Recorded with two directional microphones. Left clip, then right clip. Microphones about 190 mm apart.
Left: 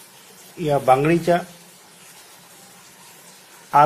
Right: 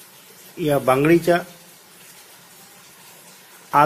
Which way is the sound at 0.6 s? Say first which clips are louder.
Left 1 dB; 20° right (ahead or behind).